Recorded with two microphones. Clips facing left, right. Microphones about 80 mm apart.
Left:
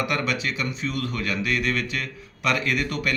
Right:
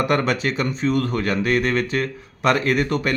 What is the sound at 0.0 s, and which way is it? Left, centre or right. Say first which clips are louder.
Speech: right 6 dB; right.